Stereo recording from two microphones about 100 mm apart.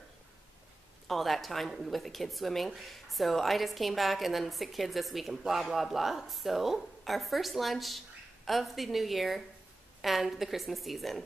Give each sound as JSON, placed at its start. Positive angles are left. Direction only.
{"t": 1.0, "sound": "a woman's voice", "side_deg": 0}